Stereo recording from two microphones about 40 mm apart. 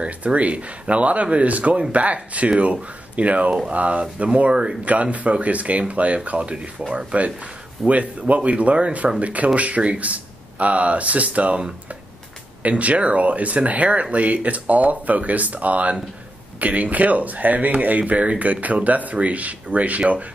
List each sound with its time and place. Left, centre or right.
0.0 s speech: right
5.0 s speech: right
7.8 s speech: right
12.6 s speech: right